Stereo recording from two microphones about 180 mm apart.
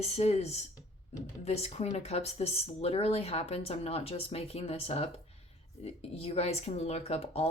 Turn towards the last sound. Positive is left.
turn(degrees=35)  # may be behind; listen again after turning